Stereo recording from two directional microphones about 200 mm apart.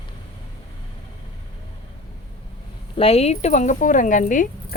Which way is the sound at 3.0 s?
30° left (ahead or behind).